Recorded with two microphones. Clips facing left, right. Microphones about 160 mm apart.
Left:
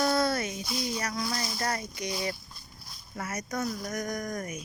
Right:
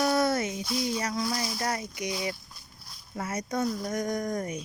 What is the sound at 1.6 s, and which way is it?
Speech, 15° right (ahead or behind).